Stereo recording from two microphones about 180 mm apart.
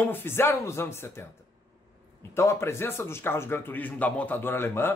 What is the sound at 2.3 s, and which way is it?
Speech, 15° left (ahead or behind).